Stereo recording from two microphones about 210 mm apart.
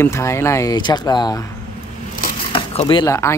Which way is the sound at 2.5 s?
25° left (ahead or behind).